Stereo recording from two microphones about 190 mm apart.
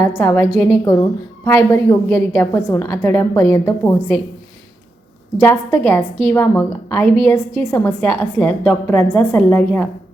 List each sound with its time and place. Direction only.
0.0 s a woman's voice: 15° left (ahead or behind)
5.4 s a woman's voice: 10° left (ahead or behind)